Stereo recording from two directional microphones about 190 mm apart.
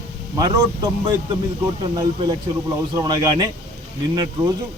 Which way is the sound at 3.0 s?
20° right (ahead or behind).